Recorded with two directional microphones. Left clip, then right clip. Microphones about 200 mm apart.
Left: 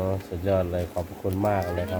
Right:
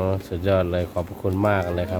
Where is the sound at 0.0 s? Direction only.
25° right (ahead or behind).